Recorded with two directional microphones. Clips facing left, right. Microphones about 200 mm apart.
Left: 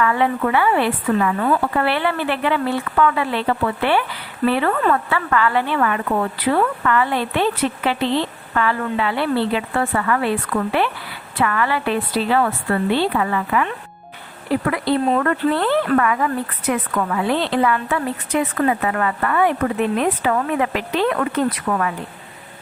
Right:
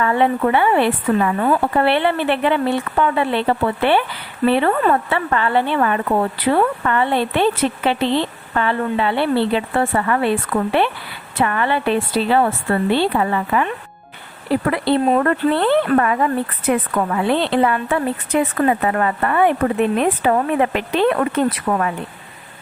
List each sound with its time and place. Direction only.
0.0 s a woman's voice: 30° right (ahead or behind)
14.7 s a woman's voice: 30° right (ahead or behind)